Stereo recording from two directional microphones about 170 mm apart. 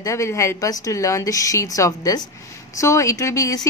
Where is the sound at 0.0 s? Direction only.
15° left (ahead or behind).